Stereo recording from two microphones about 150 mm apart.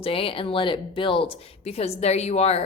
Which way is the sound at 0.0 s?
40° left (ahead or behind).